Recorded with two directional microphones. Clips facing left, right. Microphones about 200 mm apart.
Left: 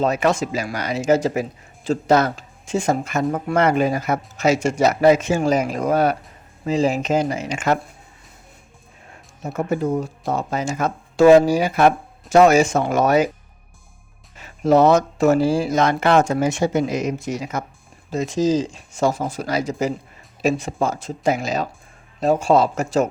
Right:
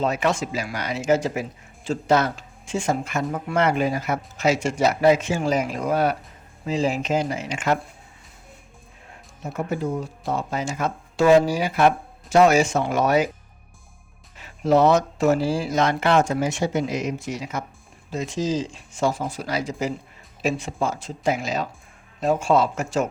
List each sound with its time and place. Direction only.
0.0 s speech: 40° left (ahead or behind)
9.4 s speech: 45° left (ahead or behind)
14.6 s speech: 45° left (ahead or behind)